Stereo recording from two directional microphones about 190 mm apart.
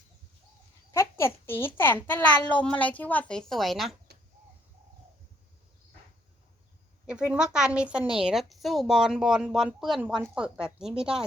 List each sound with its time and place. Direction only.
0.9 s a child's voice: 15° left (ahead or behind)
7.1 s speech: 5° right (ahead or behind)